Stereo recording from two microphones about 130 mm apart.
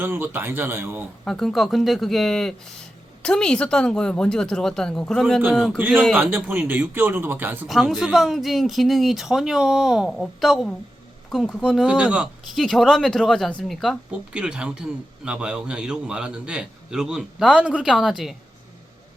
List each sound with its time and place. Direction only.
0.0 s a man's voice: 15° right (ahead or behind)
1.2 s speech: 5° left (ahead or behind)
5.8 s a man's voice: 15° right (ahead or behind)
7.7 s a man's voice: centre (ahead or behind)